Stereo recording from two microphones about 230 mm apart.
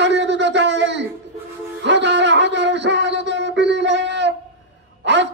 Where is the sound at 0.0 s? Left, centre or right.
Right.